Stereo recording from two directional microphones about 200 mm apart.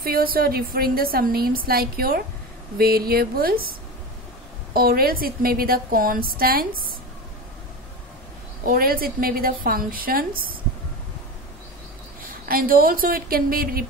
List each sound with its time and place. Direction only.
0.0 s a woman's voice: 45° right (ahead or behind)
4.7 s a woman's voice: 50° right (ahead or behind)
8.6 s a woman's voice: 45° right (ahead or behind)
12.4 s a woman's voice: 45° right (ahead or behind)